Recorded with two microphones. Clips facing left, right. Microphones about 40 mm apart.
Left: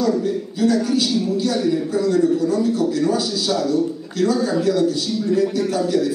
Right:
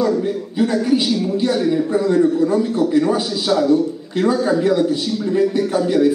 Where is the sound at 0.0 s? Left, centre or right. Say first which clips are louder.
Right 1 dB; right.